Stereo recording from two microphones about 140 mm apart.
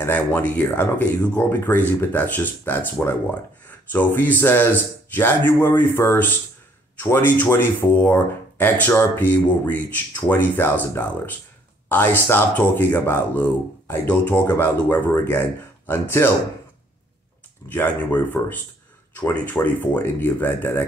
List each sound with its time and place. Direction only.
0.0 s speech: 15° left (ahead or behind)
17.6 s speech: 15° left (ahead or behind)